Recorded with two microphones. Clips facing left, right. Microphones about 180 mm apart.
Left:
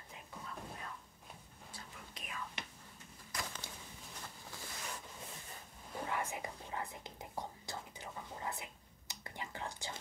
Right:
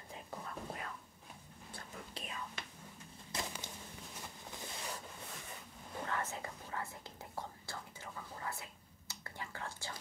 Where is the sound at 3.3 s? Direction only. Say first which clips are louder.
Right 2 dB; 25° right (ahead or behind).